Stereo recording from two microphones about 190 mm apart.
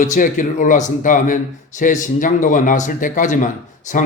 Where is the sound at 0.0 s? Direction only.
45° left (ahead or behind).